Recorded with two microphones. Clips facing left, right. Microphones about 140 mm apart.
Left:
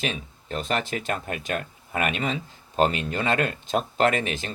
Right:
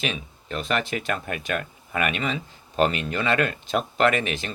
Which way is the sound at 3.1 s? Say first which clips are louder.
Right 1 dB; 45° left (ahead or behind).